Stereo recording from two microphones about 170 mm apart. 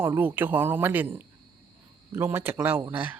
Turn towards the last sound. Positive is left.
turn(degrees=-10)  # may be behind; listen again after turning